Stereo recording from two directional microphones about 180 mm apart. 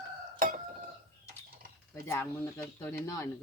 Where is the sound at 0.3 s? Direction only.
50° right (ahead or behind).